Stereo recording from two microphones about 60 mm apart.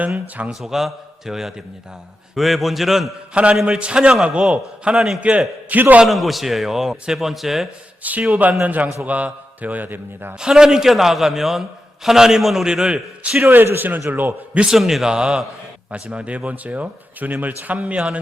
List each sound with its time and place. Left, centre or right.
0.6 s a man's voice: centre
4.9 s a man's voice: centre
5.6 s speech: right
6.1 s a man's voice: centre
8.0 s speech: right
10.3 s a man's voice: centre
12.6 s a man's voice: centre
13.5 s a man's voice: right
14.5 s a man's voice: centre
14.8 s a man's voice: centre
15.0 s a man's voice: centre